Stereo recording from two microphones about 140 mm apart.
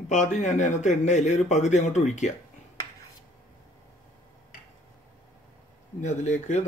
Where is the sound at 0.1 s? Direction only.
60° left (ahead or behind).